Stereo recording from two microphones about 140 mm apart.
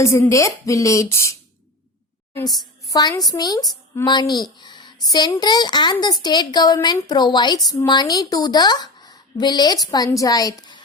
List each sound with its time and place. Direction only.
0.0 s a woman's voice: 20° left (ahead or behind)
4.6 s a sound: 35° left (ahead or behind)
5.4 s a woman's voice: 30° left (ahead or behind)